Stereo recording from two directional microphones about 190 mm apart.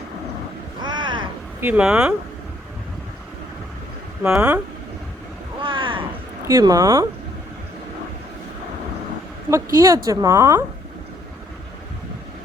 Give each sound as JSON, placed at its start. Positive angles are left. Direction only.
{"t": 0.8, "sound": "cat", "side_deg": -25}
{"t": 1.6, "sound": "speech", "side_deg": -5}
{"t": 4.2, "sound": "speech", "side_deg": -5}
{"t": 5.5, "sound": "vehicle", "side_deg": -25}
{"t": 6.5, "sound": "speech", "side_deg": -15}
{"t": 9.5, "sound": "speech", "side_deg": -15}